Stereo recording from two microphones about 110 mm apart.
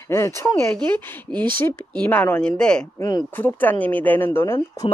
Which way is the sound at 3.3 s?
15° left (ahead or behind).